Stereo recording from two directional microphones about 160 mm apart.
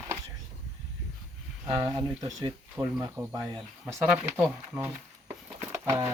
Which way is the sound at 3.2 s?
20° right (ahead or behind).